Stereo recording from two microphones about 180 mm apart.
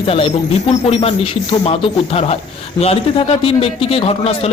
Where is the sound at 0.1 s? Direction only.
30° left (ahead or behind).